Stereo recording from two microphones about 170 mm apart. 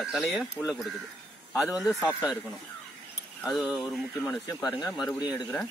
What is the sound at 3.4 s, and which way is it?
Speech, centre (ahead or behind).